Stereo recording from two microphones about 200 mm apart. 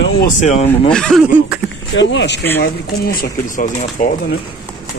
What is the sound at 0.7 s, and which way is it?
Speech, 5° left (ahead or behind).